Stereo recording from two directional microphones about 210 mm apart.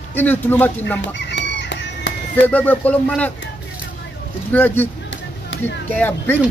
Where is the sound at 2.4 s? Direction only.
10° left (ahead or behind).